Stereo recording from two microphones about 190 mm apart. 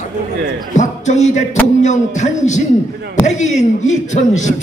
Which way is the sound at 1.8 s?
40° left (ahead or behind).